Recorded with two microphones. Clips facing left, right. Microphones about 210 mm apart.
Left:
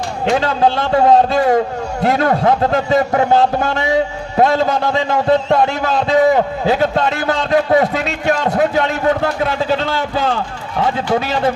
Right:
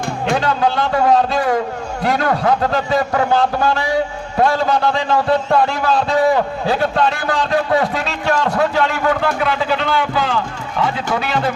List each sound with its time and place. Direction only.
0.3 s a man's voice: 25° left (ahead or behind)
10.2 s speech: 45° left (ahead or behind)